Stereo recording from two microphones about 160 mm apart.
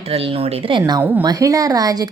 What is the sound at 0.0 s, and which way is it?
A woman's voice, 40° right (ahead or behind).